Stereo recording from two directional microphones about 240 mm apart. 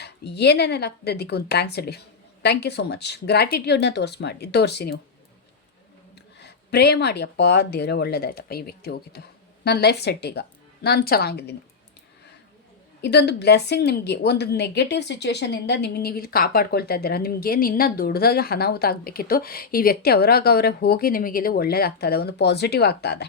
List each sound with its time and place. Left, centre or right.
0.0 s speech: left
6.4 s a woman's voice: left
13.0 s a woman's voice: left